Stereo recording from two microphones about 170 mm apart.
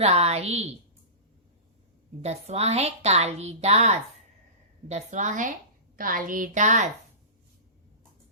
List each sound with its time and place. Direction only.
0.0 s a woman's voice: 40° right (ahead or behind)
2.2 s a woman's voice: 40° right (ahead or behind)